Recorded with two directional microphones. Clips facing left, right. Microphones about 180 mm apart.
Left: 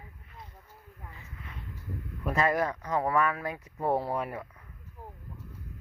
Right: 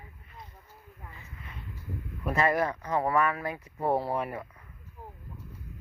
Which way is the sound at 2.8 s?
25° right (ahead or behind).